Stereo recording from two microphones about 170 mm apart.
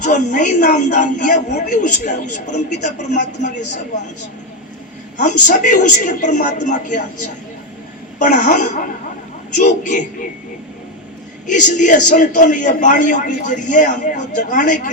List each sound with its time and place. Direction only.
0.0 s a woman's voice: 50° left (ahead or behind)
5.2 s a woman's voice: 50° left (ahead or behind)
8.2 s a woman's voice: 45° left (ahead or behind)
11.4 s a woman's voice: 50° left (ahead or behind)